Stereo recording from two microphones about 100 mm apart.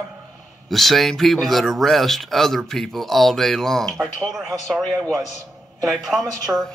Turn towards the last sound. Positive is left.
turn(degrees=0)  # may be behind; listen again after turning